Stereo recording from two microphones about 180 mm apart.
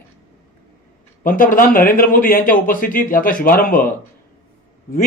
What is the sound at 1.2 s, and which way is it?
Speech, 50° left (ahead or behind).